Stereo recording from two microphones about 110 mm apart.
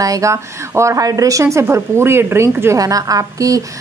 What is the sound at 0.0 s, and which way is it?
A woman's voice, 30° right (ahead or behind).